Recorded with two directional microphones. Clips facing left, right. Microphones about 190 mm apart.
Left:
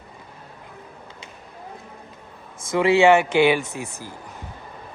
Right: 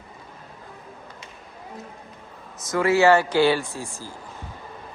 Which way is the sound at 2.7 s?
20° left (ahead or behind).